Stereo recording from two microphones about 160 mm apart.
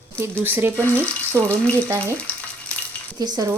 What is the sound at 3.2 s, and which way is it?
Speech, 25° right (ahead or behind).